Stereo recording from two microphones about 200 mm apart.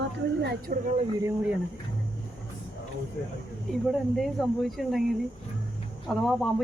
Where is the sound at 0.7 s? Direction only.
45° right (ahead or behind).